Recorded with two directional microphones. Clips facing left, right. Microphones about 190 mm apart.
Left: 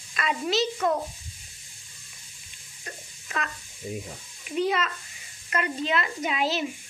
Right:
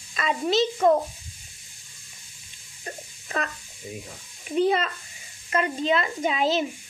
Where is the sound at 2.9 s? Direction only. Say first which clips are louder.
Right 5 dB; 35° right (ahead or behind).